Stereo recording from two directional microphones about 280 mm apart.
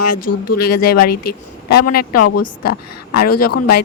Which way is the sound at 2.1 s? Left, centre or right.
Left.